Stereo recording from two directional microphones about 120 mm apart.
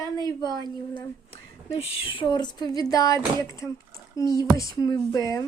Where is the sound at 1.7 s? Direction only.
50° left (ahead or behind); by 3.2 s 30° left (ahead or behind).